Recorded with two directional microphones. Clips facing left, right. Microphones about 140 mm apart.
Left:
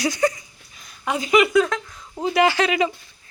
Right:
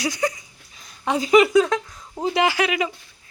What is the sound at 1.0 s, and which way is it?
Speech, 35° right (ahead or behind).